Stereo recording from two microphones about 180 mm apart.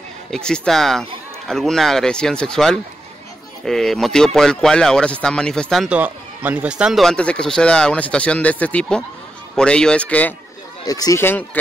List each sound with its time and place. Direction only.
0.3 s a man's voice: 5° left (ahead or behind)
10.9 s a man's voice: 20° left (ahead or behind)